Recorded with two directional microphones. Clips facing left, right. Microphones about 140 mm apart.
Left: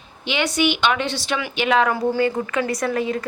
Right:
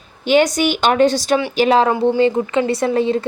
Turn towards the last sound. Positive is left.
turn(degrees=-30)  # may be behind; listen again after turning